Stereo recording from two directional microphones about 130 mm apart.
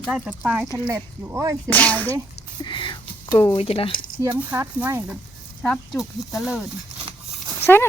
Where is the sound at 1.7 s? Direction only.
10° left (ahead or behind).